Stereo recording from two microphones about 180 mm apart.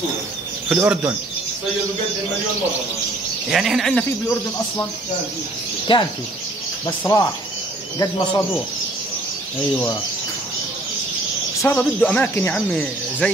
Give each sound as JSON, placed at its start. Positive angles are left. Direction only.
{"t": 0.7, "sound": "speech", "side_deg": -10}
{"t": 3.4, "sound": "speech", "side_deg": 0}
{"t": 5.9, "sound": "speech", "side_deg": 30}
{"t": 7.0, "sound": "speech", "side_deg": 15}
{"t": 11.6, "sound": "speech", "side_deg": 10}